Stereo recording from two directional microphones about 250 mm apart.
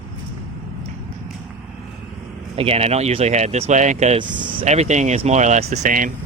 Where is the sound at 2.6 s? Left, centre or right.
Right.